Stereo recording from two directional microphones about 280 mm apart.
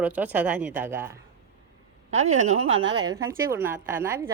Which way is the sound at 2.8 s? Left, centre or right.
Centre.